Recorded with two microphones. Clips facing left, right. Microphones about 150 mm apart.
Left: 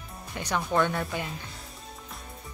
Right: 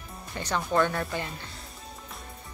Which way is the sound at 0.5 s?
Centre (ahead or behind).